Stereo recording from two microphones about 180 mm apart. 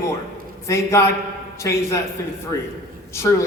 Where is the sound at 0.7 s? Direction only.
15° left (ahead or behind).